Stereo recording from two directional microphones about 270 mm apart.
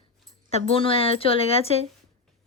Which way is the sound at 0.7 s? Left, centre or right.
Centre.